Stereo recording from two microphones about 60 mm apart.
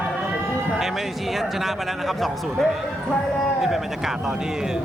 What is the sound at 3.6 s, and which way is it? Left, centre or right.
Speech, centre.